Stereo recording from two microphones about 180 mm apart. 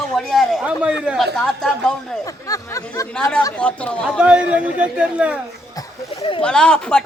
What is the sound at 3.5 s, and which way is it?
Speech, 5° left (ahead or behind).